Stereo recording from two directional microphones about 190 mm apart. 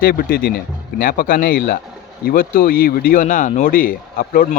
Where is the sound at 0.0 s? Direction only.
50° left (ahead or behind).